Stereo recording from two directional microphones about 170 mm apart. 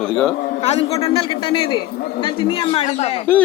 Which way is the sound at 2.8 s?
40° left (ahead or behind).